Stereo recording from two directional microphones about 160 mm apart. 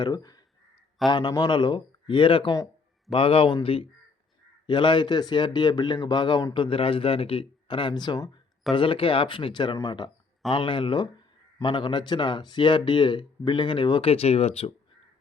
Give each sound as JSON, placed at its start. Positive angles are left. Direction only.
{"t": 0.0, "sound": "speech", "side_deg": 25}